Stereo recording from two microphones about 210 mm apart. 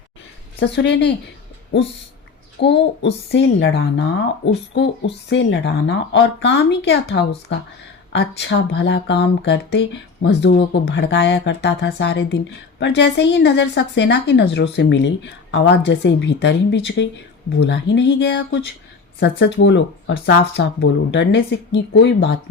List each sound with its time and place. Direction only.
0.6 s speech: 55° left (ahead or behind)
2.6 s speech: 55° left (ahead or behind)